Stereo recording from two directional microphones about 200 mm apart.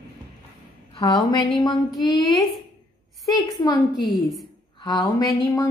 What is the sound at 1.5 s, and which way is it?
Speech, 20° left (ahead or behind).